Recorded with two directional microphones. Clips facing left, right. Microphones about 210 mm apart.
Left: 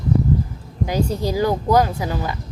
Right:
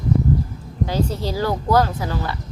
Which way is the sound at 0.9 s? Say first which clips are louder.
Left 2 dB; 15° left (ahead or behind).